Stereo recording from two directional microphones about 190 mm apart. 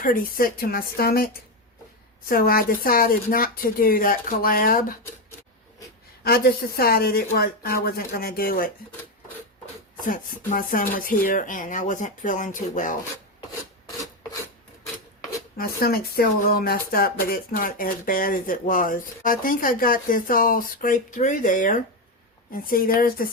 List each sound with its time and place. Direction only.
0.0 s speech: 50° left (ahead or behind)
6.2 s speech: 55° left (ahead or behind)
10.0 s speech: 45° left (ahead or behind)
15.5 s speech: 50° left (ahead or behind)